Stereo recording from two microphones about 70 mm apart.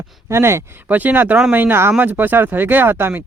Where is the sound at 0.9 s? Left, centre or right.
Right.